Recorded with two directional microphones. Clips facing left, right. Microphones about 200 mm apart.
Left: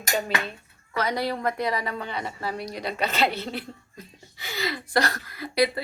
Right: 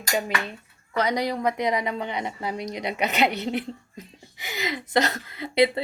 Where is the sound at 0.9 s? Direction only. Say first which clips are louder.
Right 2 dB; 15° right (ahead or behind).